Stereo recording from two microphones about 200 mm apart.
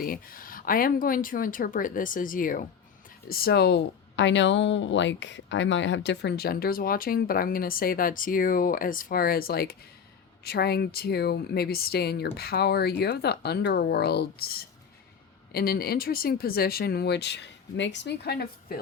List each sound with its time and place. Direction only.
0.0 s speech: 45° left (ahead or behind)